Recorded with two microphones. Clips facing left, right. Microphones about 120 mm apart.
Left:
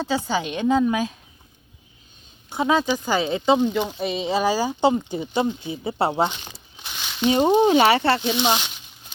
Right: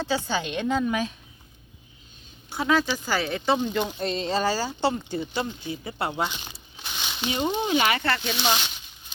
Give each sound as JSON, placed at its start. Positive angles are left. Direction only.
{"t": 0.0, "sound": "speech", "side_deg": 10}
{"t": 2.5, "sound": "speech", "side_deg": 20}
{"t": 3.7, "sound": "speech", "side_deg": 5}
{"t": 6.8, "sound": "a sound", "side_deg": -5}
{"t": 7.3, "sound": "speech", "side_deg": 35}